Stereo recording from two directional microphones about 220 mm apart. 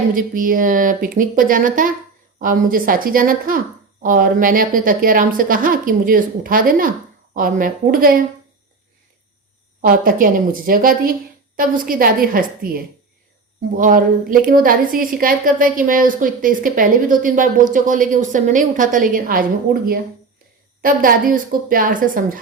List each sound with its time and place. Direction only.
0.1 s a woman's voice: 40° right (ahead or behind)
9.8 s a woman's voice: 40° right (ahead or behind)